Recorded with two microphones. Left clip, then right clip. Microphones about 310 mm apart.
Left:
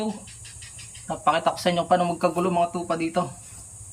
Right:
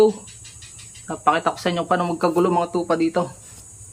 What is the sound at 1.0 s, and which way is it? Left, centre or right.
Speech, centre.